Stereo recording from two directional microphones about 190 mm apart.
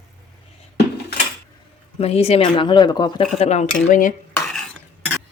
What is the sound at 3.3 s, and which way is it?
Speech, 35° left (ahead or behind).